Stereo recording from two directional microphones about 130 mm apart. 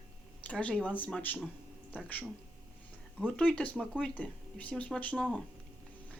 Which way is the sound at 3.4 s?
10° left (ahead or behind).